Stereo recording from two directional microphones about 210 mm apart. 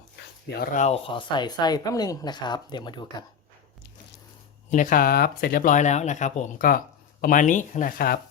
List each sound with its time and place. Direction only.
0.6 s speech: 40° left (ahead or behind); by 3.2 s 20° left (ahead or behind)
4.7 s speech: 40° left (ahead or behind)